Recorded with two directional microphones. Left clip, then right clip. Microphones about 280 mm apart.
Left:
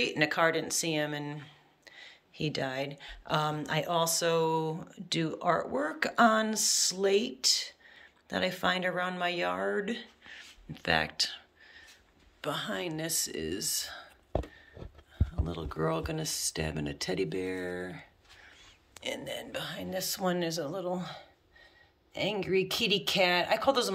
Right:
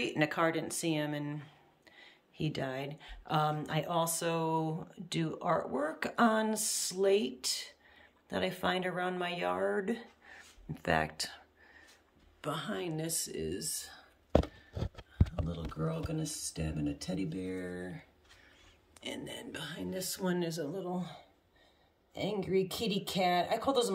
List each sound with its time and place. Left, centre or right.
0.0 s a woman's voice: centre
15.4 s speech: centre
23.0 s speech: left